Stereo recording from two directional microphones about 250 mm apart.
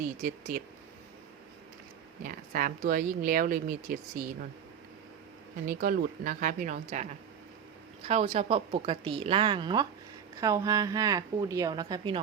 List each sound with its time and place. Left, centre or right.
0.0 s speech: right
2.2 s speech: right
5.6 s a woman's voice: right; by 12.2 s centre